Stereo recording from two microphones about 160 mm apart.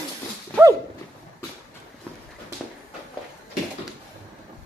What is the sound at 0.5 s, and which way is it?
Horse, 15° right (ahead or behind).